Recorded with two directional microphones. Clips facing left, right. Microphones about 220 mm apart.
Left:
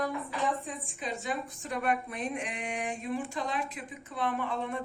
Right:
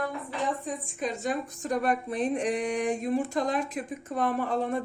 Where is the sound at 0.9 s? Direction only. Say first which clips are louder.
Right 5 dB; 50° right (ahead or behind).